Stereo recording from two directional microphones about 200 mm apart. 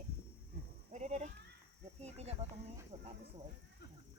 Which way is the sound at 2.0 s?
30° right (ahead or behind).